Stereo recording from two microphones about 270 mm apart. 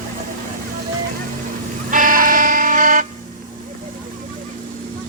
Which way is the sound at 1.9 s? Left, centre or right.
Right.